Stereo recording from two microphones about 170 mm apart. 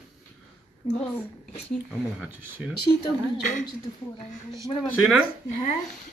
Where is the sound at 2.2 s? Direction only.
5° right (ahead or behind).